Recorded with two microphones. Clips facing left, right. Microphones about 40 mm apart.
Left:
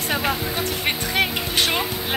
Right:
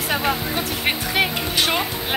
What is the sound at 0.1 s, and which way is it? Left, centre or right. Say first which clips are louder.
Speech: right 1 dB; centre.